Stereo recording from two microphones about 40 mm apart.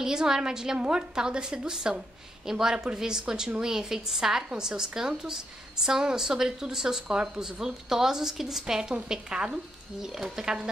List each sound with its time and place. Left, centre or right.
0.0 s a woman's voice: centre